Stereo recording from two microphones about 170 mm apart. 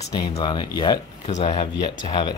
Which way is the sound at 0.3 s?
25° left (ahead or behind).